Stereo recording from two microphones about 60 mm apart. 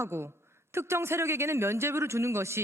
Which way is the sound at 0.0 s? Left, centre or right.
Right.